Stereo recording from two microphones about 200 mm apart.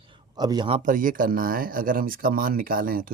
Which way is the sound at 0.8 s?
40° right (ahead or behind).